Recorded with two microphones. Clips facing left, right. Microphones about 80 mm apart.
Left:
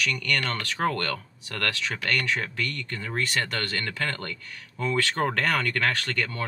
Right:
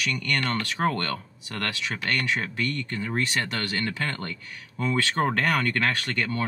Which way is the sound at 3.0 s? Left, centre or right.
Centre.